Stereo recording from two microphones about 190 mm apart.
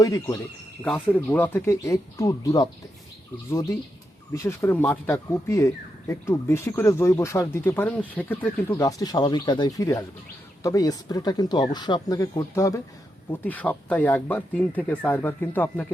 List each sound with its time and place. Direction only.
0.0 s speech: 20° left (ahead or behind)